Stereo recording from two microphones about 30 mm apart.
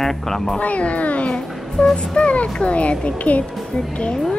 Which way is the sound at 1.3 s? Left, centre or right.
Left.